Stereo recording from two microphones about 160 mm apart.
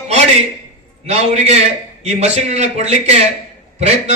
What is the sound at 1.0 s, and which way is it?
A man's voice, 40° right (ahead or behind).